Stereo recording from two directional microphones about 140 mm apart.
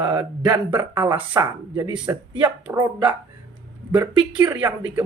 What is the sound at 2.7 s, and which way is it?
Speech, 30° right (ahead or behind).